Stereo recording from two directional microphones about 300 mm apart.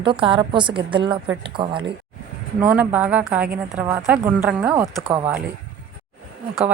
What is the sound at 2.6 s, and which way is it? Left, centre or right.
A woman's voice, centre.